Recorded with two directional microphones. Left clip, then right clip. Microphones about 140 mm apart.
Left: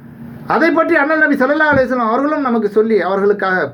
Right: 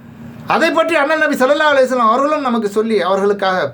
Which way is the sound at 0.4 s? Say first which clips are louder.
Even; 45° right (ahead or behind).